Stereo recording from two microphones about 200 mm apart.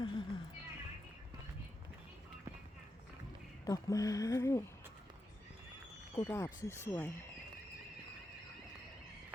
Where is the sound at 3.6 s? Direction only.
15° left (ahead or behind).